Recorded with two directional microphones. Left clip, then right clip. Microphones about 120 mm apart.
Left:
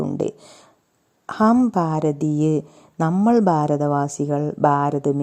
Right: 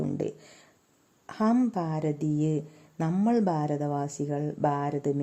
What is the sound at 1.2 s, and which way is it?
A woman's voice, 45° left (ahead or behind).